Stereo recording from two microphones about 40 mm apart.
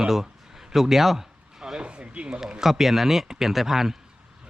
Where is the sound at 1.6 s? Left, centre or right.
Right.